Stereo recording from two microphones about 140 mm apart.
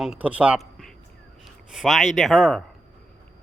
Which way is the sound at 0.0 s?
5° right (ahead or behind).